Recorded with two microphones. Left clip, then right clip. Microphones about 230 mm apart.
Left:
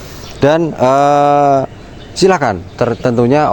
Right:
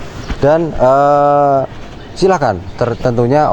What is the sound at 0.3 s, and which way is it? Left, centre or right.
A man's voice, left.